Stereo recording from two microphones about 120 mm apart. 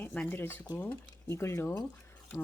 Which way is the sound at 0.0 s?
10° left (ahead or behind).